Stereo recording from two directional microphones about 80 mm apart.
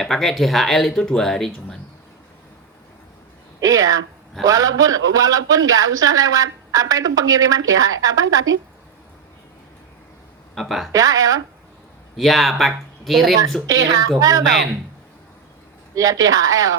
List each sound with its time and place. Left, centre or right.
0.0 s speech: centre
3.6 s a man's voice: right
10.5 s speech: centre
10.9 s a man's voice: right
12.1 s speech: centre
13.7 s a man's voice: right
16.0 s a man's voice: right